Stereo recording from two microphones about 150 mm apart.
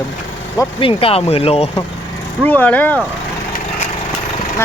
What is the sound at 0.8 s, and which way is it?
Speech, 35° left (ahead or behind).